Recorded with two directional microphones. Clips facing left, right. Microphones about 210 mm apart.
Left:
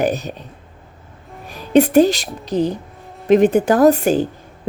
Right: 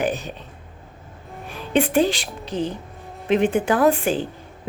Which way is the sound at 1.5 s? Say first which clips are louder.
Left 7 dB; 40° left (ahead or behind).